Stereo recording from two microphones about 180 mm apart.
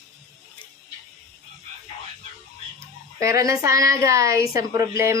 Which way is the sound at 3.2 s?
15° right (ahead or behind).